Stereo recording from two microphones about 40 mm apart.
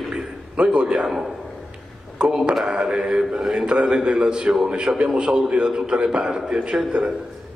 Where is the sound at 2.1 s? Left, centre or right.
Right.